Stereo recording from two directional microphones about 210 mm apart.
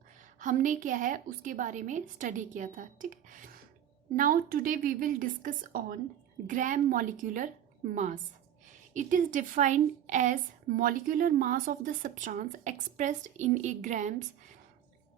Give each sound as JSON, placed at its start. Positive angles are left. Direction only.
{"t": 0.3, "sound": "speech", "side_deg": -40}